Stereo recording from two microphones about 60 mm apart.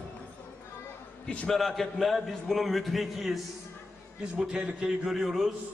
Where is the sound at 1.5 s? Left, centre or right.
Centre.